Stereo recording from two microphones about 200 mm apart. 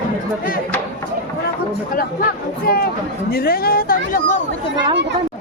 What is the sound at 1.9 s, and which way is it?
Speech, 45° left (ahead or behind).